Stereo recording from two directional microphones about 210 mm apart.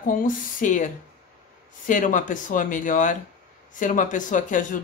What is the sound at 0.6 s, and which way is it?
Speech, 35° left (ahead or behind).